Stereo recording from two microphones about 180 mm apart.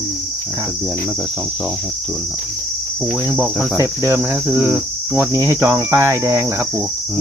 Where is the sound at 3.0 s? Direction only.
10° right (ahead or behind).